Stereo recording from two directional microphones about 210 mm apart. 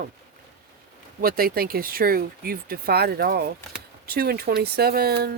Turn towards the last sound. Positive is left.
turn(degrees=-45)  # may be behind; listen again after turning